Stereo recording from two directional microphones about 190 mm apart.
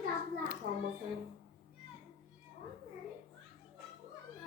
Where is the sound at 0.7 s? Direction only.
55° right (ahead or behind).